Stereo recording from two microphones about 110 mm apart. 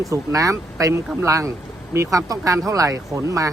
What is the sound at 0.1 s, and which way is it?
Speech, 30° right (ahead or behind).